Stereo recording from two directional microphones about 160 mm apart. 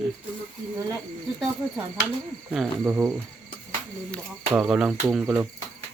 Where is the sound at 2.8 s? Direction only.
15° right (ahead or behind).